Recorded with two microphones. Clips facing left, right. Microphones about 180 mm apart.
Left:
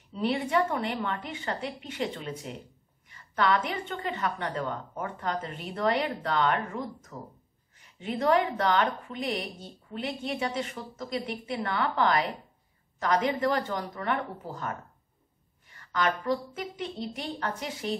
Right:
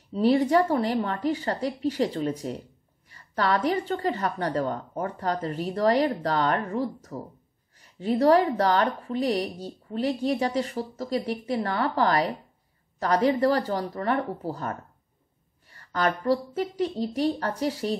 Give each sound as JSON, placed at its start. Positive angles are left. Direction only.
{"t": 0.1, "sound": "a woman's voice", "side_deg": -35}